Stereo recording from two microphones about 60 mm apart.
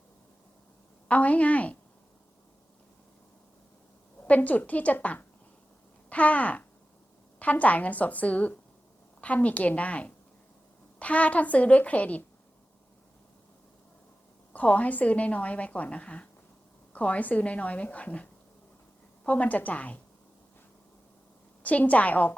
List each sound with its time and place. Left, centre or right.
1.0 s a woman's voice: left
4.4 s a woman's voice: left
14.5 s a woman's voice: left
21.6 s a woman's voice: left